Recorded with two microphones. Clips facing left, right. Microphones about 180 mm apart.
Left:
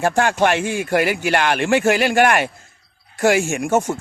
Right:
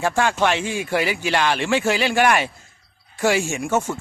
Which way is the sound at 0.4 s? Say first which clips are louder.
Left 3 dB; 50° left (ahead or behind).